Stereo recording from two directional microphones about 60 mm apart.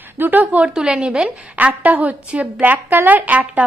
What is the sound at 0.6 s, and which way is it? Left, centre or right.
A woman's voice, centre.